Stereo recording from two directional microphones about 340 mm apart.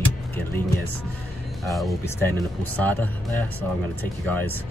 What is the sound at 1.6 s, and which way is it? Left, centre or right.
Speech, centre.